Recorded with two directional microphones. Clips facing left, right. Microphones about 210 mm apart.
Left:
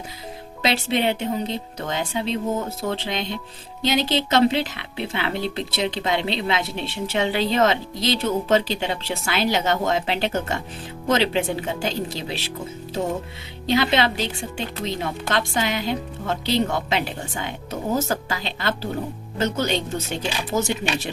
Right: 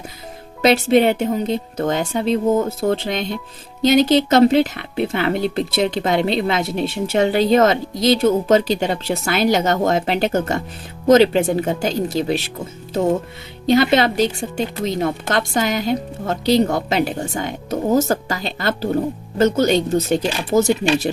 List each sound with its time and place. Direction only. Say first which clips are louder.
0.6 s speech: right 8 dB; 50° right (ahead or behind)
13.7 s speech: right 6 dB; 45° right (ahead or behind)